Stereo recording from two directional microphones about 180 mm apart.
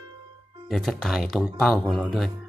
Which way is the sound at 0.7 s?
Centre (ahead or behind).